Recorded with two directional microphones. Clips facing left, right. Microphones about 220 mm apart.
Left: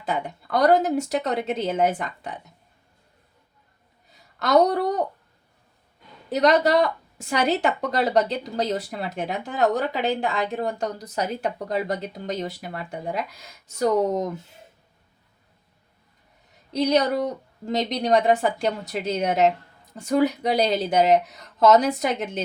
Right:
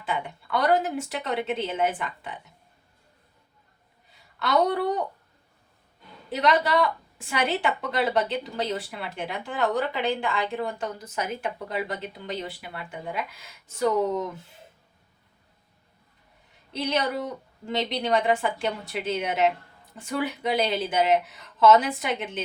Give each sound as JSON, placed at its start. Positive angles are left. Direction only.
{"t": 0.0, "sound": "a woman's voice", "side_deg": 40}
{"t": 4.1, "sound": "a woman's voice", "side_deg": 45}
{"t": 6.3, "sound": "a woman's voice", "side_deg": 40}
{"t": 16.7, "sound": "a woman's voice", "side_deg": 40}